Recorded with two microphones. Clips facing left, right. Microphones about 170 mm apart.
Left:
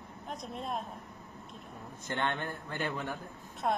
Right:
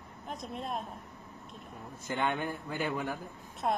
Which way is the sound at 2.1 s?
10° right (ahead or behind).